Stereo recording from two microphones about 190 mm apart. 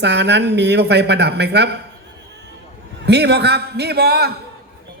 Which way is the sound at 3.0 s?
60° right (ahead or behind).